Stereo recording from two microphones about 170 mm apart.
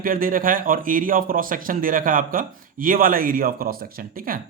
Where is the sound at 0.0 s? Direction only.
55° right (ahead or behind).